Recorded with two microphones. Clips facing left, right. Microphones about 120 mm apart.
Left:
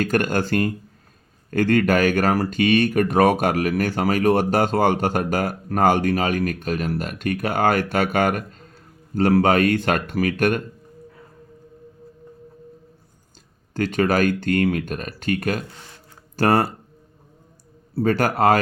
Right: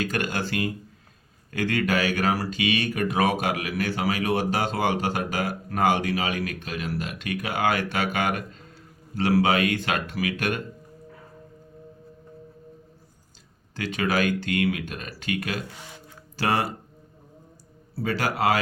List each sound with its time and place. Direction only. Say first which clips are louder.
0.0 s speech: left 7 dB; 50° left (ahead or behind)
13.7 s speech: left 6 dB; 45° left (ahead or behind)
17.9 s speech: left 7 dB; 50° left (ahead or behind)